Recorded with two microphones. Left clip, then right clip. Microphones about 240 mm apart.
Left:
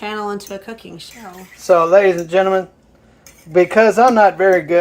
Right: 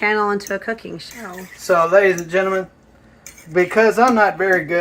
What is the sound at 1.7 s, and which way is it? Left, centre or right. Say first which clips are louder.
A woman's voice: left 3 dB; left.